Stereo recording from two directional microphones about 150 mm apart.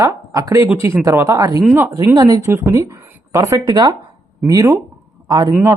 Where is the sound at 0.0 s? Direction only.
20° right (ahead or behind).